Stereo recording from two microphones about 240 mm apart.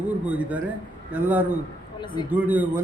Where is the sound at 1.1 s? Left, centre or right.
Centre.